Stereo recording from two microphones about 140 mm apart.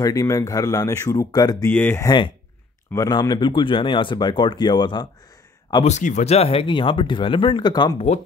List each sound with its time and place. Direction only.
0.0 s speech: 25° left (ahead or behind)
1.7 s speech: 10° left (ahead or behind)
2.0 s speech: 30° left (ahead or behind)
5.9 s speech: 60° left (ahead or behind); by 7.9 s 35° left (ahead or behind)